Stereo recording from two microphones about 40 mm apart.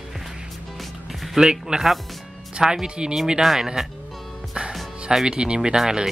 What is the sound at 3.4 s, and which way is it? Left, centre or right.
Speech, centre.